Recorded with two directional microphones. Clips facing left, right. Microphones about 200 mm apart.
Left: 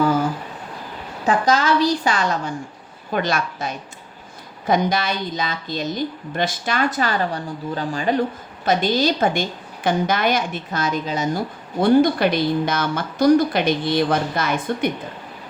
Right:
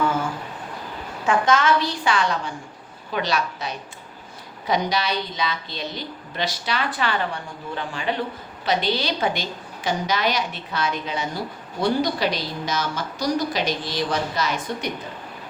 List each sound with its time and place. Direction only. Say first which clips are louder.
0.0 s a woman's voice: left 5 dB; 35° left (ahead or behind); by 14.8 s 55° left (ahead or behind)